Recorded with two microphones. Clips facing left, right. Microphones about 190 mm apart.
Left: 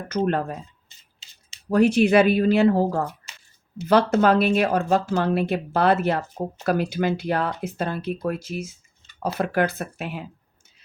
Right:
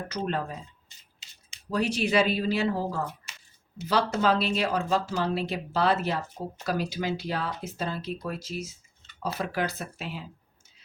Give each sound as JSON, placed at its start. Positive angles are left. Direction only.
{"t": 0.3, "sound": "speech", "side_deg": 55}
{"t": 1.7, "sound": "speech", "side_deg": 55}